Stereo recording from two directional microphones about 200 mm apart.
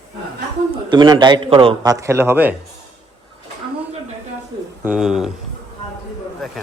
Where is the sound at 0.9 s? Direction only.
20° right (ahead or behind).